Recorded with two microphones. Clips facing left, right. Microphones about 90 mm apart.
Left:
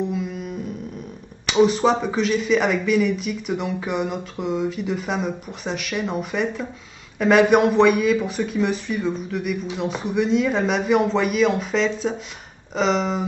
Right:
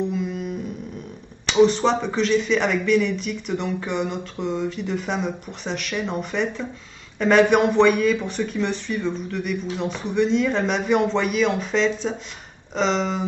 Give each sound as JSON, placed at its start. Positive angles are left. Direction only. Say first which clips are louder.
{"t": 0.0, "sound": "music", "louder": "right 1 dB", "side_deg": 0}
{"t": 1.4, "sound": "speech", "louder": "even", "side_deg": 5}